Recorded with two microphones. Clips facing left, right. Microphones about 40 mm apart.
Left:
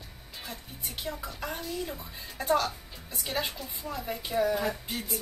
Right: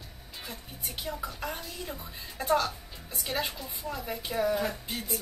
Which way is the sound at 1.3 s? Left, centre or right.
Centre.